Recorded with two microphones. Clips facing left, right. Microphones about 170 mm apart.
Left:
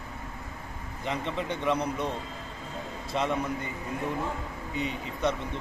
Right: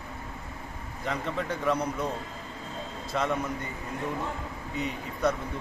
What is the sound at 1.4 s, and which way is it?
Speech, centre (ahead or behind).